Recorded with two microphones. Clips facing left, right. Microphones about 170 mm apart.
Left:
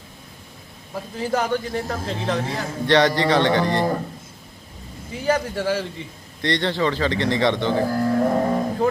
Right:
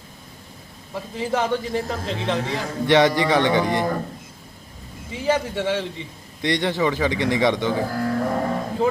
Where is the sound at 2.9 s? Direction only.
20° right (ahead or behind).